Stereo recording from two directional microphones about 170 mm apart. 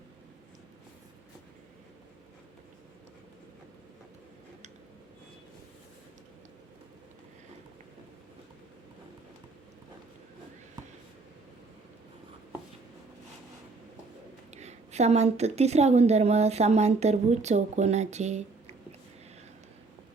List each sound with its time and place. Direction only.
14.5 s a woman's voice: 40° right (ahead or behind)